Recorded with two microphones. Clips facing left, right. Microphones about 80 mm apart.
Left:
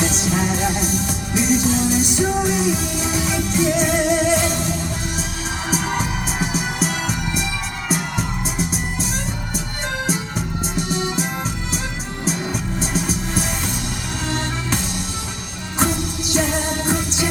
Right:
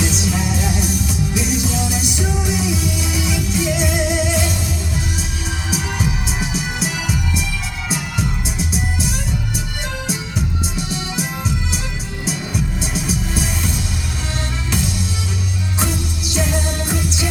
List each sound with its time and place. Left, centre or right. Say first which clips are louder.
0.0 s music: left 1 dB; left
5.7 s music: left 1 dB; left
8.5 s music: even; left
15.8 s music: left 5 dB; left